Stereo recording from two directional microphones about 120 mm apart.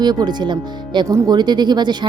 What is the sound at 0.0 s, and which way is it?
A woman's voice, 35° right (ahead or behind).